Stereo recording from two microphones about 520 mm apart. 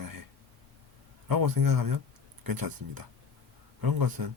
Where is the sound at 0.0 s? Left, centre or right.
Right.